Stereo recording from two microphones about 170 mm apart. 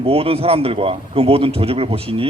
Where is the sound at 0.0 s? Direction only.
35° right (ahead or behind).